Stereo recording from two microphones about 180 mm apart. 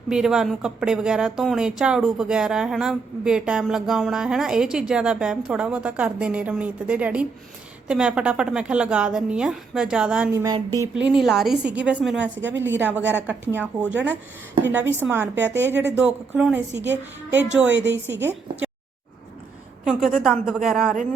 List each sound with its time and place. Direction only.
0.1 s speech: 5° right (ahead or behind)
10.3 s speech: 20° right (ahead or behind)
10.9 s speech: 5° right (ahead or behind)
12.4 s a woman's voice: 90° right
13.9 s a woman's voice: 10° right (ahead or behind)
17.7 s a woman's voice: 85° right
18.2 s a woman's voice: 10° right (ahead or behind)
19.8 s speech: centre (ahead or behind)